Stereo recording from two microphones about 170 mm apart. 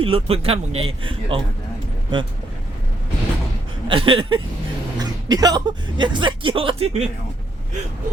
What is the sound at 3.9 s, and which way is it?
Speech, 30° right (ahead or behind).